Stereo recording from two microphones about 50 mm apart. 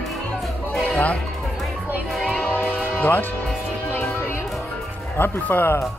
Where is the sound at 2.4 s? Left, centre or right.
Left.